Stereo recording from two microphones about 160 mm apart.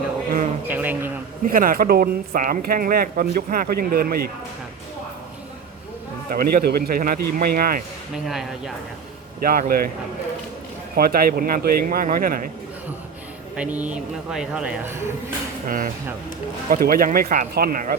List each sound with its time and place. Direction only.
0.7 s a man's voice: 10° right (ahead or behind)
1.5 s speech: 60° right (ahead or behind)
6.3 s speech: 70° right (ahead or behind)
8.1 s speech: centre (ahead or behind)
9.4 s speech: 65° right (ahead or behind)
10.9 s speech: 65° right (ahead or behind)
13.6 s speech: 10° right (ahead or behind)
15.6 s speech: 60° right (ahead or behind)